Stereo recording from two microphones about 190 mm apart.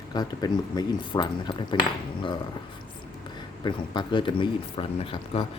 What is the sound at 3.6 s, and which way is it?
Speech, 25° left (ahead or behind).